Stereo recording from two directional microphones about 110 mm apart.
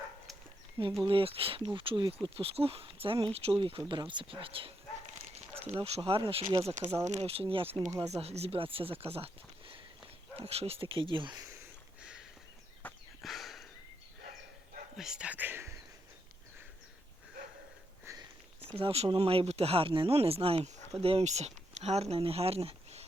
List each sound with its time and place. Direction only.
1.0 s speech: 55° right (ahead or behind)
5.6 s speech: 80° right; by 6.9 s 55° right (ahead or behind)
7.0 s speech: 85° right; by 7.9 s 60° right (ahead or behind)
8.0 s speech: 75° right (ahead or behind); by 11.4 s 45° right (ahead or behind)
12.8 s a sound: 15° left (ahead or behind)
13.2 s a sound: centre (ahead or behind)
14.9 s speech: 5° right (ahead or behind); by 15.8 s 20° right (ahead or behind)
18.1 s a sound: 25° right (ahead or behind)
18.8 s speech: 65° right (ahead or behind)